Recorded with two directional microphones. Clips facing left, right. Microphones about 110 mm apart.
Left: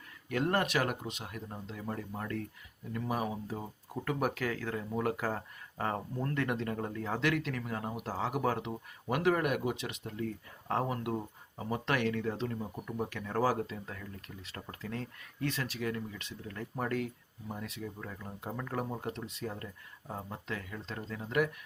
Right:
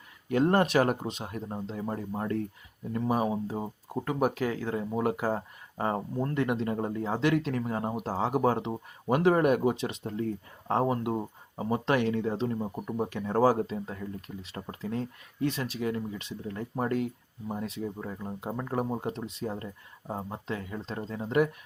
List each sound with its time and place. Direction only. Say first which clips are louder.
0.3 s speech: right 7 dB; 30° right (ahead or behind)